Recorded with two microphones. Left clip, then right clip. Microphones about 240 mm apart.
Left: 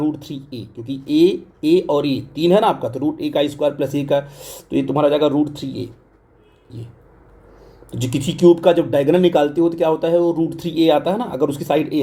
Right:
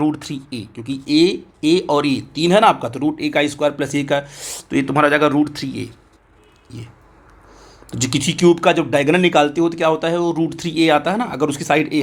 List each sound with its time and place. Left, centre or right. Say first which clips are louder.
0.1 s speech: right 2 dB; centre
1.7 s speech: even; right
2.5 s speech: right 2 dB; centre
3.0 s speech: right 1 dB; right
3.3 s speech: even; centre
4.9 s speech: right 1 dB; right
7.6 s speech: right 3 dB; centre